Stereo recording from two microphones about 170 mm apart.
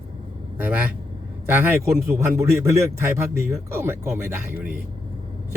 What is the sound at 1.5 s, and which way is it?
Speech, 10° right (ahead or behind).